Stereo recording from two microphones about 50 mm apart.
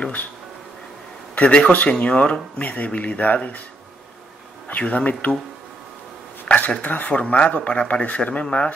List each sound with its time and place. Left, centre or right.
0.0 s speech: left
1.3 s speech: left
4.6 s speech: left
6.4 s speech: left